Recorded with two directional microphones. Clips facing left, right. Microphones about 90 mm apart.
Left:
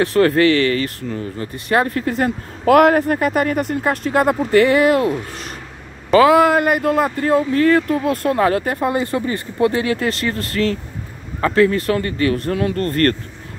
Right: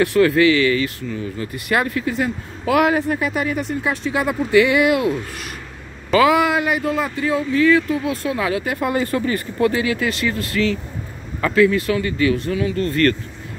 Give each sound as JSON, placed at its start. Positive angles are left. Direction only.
{"t": 0.0, "sound": "speech", "side_deg": 40}
{"t": 2.0, "sound": "speech", "side_deg": 50}
{"t": 6.1, "sound": "speech", "side_deg": 40}
{"t": 8.7, "sound": "speech", "side_deg": 25}